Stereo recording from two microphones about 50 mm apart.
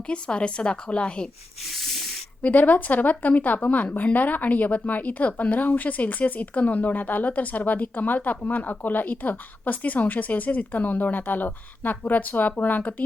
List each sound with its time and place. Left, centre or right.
0.1 s a woman's voice: left
2.4 s speech: left